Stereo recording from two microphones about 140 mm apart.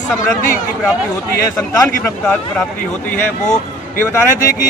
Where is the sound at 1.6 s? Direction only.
15° left (ahead or behind).